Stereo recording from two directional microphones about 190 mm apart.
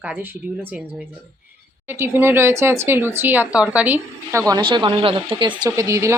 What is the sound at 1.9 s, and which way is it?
Speech, 10° right (ahead or behind).